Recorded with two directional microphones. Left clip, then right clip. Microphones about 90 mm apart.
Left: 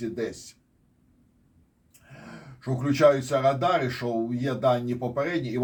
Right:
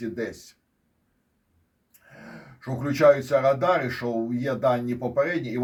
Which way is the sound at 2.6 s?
15° left (ahead or behind).